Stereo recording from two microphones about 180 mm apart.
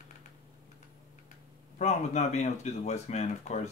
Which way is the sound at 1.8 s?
40° left (ahead or behind).